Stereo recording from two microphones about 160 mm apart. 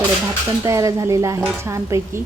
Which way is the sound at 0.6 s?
20° right (ahead or behind).